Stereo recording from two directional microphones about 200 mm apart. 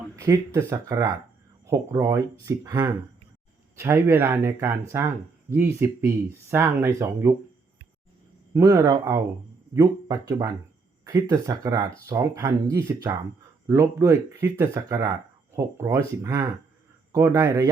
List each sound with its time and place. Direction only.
0.2 s speech: 15° right (ahead or behind)
8.5 s speech: 15° right (ahead or behind)